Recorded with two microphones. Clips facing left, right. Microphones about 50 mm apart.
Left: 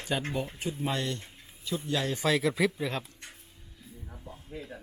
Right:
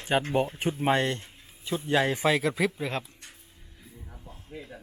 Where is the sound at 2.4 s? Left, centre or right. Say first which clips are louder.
Even; centre.